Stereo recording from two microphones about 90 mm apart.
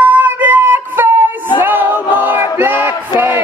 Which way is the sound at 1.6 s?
20° right (ahead or behind).